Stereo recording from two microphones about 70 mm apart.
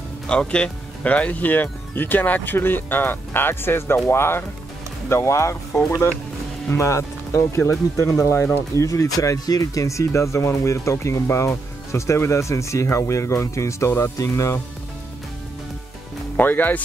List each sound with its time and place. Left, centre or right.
0.3 s speech: centre; by 5.6 s left
6.7 s speech: left
16.3 s speech: left